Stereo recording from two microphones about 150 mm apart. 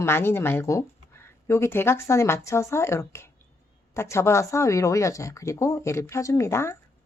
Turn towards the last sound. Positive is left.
turn(degrees=20)  # may be behind; listen again after turning